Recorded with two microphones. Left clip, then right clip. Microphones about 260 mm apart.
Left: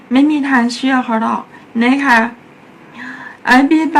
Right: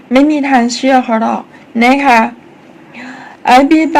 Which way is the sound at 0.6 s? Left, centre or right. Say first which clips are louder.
Right 5 dB; centre.